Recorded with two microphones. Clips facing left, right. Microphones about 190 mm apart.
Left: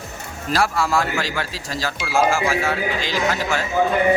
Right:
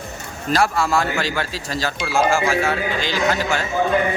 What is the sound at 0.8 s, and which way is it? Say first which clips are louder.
Speech: right 1 dB; 25° right (ahead or behind).